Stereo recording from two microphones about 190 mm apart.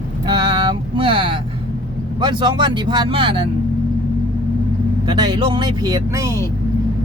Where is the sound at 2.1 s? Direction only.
25° right (ahead or behind).